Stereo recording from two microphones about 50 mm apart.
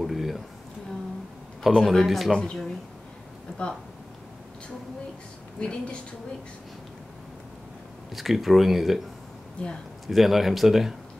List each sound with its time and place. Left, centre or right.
0.0 s a sound: centre
1.6 s a man's voice: centre
2.3 s speech: centre
3.5 s a sound: centre
5.6 s a woman's voice: centre
8.1 s a man's voice: centre
10.0 s a man's voice: centre